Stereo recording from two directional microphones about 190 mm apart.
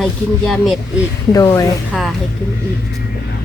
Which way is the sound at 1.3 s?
15° left (ahead or behind).